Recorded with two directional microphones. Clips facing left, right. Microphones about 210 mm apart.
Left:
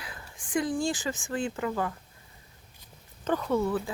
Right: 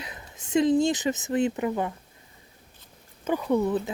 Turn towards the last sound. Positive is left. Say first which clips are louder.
# right 3 dB
turn(degrees=-20)  # may be behind; listen again after turning